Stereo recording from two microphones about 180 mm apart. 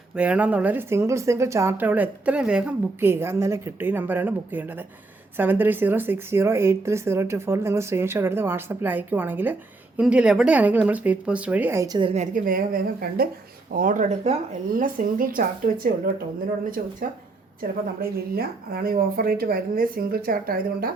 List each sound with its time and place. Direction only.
0.2 s speech: 5° right (ahead or behind); by 12.1 s 25° right (ahead or behind)
12.1 s speech: 45° right (ahead or behind)
18.3 s speech: 55° right (ahead or behind)